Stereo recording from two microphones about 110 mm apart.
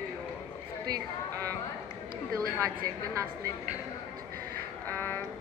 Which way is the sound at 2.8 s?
30° right (ahead or behind).